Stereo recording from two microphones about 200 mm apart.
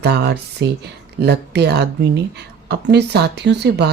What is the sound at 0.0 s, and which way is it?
Speech, 55° right (ahead or behind).